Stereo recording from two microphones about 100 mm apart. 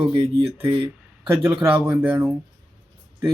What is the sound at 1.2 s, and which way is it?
Speech, 15° right (ahead or behind).